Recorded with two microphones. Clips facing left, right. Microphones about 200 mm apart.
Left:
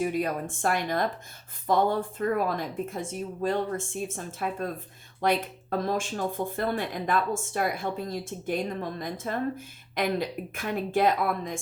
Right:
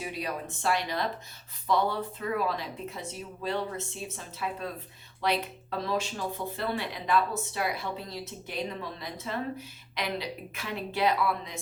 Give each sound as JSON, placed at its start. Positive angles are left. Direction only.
{"t": 0.0, "sound": "speech", "side_deg": 50}